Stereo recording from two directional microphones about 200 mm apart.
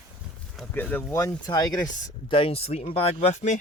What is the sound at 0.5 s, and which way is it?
Speech, 5° left (ahead or behind).